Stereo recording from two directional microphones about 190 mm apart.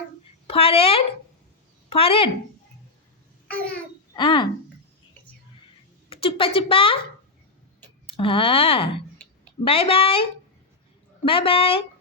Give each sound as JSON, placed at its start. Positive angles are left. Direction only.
{"t": 0.4, "sound": "a woman's voice", "side_deg": 30}
{"t": 4.1, "sound": "speech", "side_deg": 25}
{"t": 6.1, "sound": "a woman's voice", "side_deg": 30}
{"t": 8.0, "sound": "a woman's voice", "side_deg": 30}
{"t": 11.3, "sound": "a woman's voice", "side_deg": 30}